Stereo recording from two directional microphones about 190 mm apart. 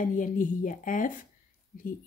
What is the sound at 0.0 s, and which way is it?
Speech, 45° left (ahead or behind).